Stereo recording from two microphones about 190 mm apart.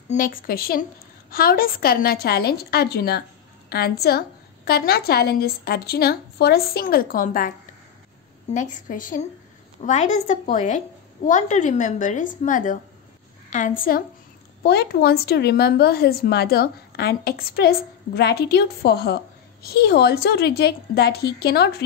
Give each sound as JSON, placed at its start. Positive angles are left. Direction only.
{"t": 0.1, "sound": "speech", "side_deg": 45}
{"t": 8.5, "sound": "a woman's voice", "side_deg": 40}
{"t": 14.6, "sound": "speech", "side_deg": 60}